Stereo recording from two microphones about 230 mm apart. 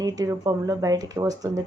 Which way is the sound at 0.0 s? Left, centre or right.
Centre.